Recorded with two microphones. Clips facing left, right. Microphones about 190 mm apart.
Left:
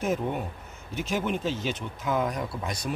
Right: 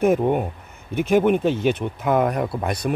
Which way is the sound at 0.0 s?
55° right (ahead or behind).